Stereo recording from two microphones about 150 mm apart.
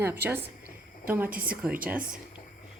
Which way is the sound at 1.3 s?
70° right (ahead or behind).